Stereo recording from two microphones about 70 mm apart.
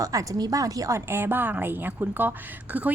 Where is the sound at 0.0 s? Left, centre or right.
Right.